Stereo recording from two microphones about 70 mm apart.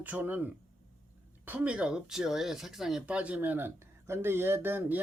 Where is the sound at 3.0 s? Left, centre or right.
Centre.